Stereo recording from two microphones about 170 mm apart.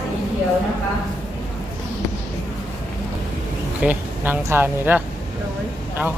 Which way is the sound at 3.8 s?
10° right (ahead or behind).